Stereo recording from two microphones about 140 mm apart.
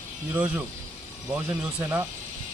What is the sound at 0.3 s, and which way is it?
Speech, 10° right (ahead or behind).